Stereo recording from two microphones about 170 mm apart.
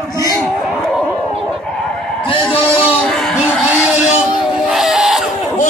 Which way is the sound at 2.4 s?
5° left (ahead or behind).